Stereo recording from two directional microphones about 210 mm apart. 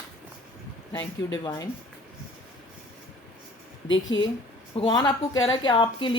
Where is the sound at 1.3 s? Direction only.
20° left (ahead or behind).